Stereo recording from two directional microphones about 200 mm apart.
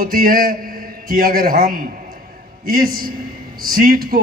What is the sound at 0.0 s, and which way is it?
A man's voice, 45° right (ahead or behind).